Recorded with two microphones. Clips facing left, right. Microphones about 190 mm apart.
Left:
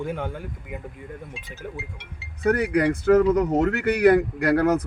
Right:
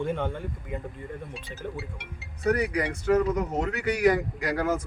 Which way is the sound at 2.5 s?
60° left (ahead or behind).